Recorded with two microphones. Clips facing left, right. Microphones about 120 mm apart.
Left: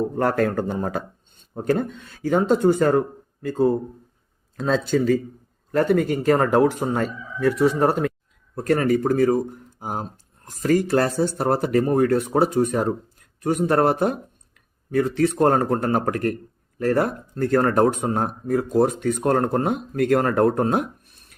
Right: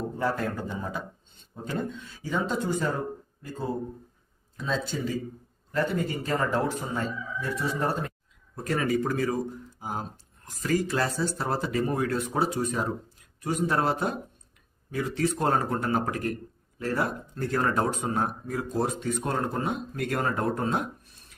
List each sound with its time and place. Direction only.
0.2 s speech: 65° left (ahead or behind)
4.5 s speech: 90° left; by 8.1 s 75° left (ahead or behind)
8.5 s speech: 60° left (ahead or behind)
10.5 s speech: 50° left (ahead or behind); by 20.8 s 65° left (ahead or behind)